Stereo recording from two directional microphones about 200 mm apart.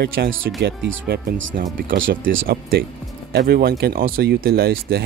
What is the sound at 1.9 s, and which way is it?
Speech, 70° right (ahead or behind).